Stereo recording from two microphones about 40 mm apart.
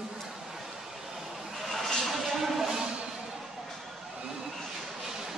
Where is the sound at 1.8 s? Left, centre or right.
Centre.